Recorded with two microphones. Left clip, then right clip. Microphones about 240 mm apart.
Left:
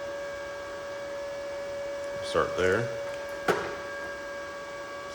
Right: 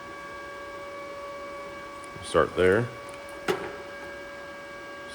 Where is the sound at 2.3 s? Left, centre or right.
Right.